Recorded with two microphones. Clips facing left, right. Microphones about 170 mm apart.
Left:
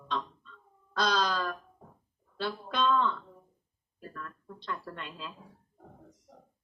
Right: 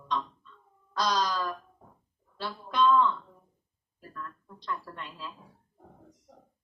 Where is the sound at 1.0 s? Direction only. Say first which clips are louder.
Even; 60° left (ahead or behind).